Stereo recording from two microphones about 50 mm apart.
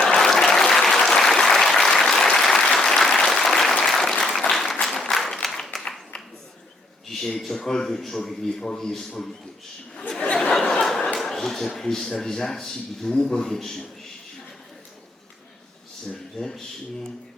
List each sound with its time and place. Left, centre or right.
0.0 s applause: centre
7.1 s a man's voice: centre
10.3 s speech: centre
16.4 s speech: centre